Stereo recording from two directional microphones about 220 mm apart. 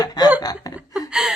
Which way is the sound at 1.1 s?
5° right (ahead or behind).